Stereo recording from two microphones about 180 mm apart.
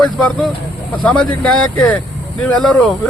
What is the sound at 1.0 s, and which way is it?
Speech, 5° left (ahead or behind).